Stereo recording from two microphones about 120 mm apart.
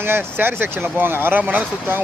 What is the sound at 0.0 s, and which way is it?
Speech, 20° right (ahead or behind).